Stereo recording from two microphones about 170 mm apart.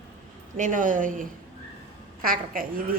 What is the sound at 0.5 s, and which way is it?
A woman's voice, 50° right (ahead or behind).